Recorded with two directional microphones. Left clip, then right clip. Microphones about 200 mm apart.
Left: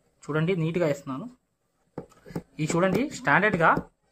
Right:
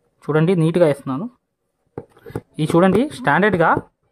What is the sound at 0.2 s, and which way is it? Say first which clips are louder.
Speech: right 10 dB; 55° right (ahead or behind).